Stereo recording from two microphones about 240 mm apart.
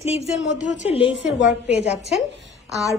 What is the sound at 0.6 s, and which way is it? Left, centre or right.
Speech, left.